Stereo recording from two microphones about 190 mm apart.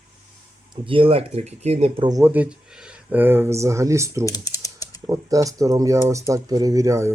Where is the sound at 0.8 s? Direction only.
30° right (ahead or behind).